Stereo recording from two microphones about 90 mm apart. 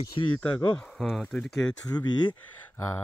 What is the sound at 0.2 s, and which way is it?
Speech, 65° left (ahead or behind).